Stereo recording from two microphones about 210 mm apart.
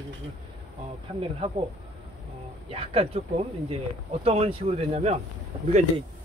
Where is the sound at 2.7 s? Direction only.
30° right (ahead or behind).